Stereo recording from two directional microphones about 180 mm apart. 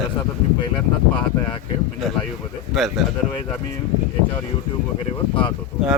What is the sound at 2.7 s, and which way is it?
Speech, centre (ahead or behind).